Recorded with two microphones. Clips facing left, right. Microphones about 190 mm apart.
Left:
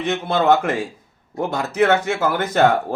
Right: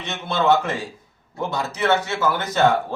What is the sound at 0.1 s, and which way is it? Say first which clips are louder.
Speech: left 2 dB; 55° left (ahead or behind).